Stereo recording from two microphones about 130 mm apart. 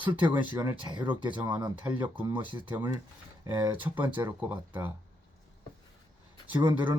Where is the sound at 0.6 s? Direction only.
35° right (ahead or behind).